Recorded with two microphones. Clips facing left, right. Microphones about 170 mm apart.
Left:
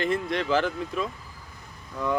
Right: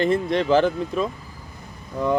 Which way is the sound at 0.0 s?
25° right (ahead or behind).